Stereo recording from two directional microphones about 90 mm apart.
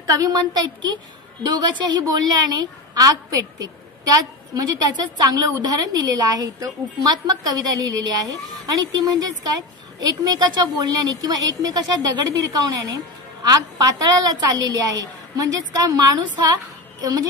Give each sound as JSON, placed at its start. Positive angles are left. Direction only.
{"t": 0.0, "sound": "a woman's voice", "side_deg": -40}